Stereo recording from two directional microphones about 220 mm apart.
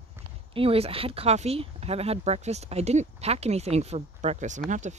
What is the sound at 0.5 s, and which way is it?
Speech, 25° right (ahead or behind).